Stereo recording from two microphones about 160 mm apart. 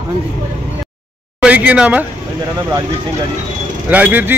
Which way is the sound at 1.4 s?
10° right (ahead or behind).